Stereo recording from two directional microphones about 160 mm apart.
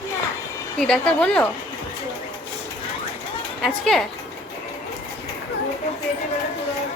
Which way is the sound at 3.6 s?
Centre (ahead or behind).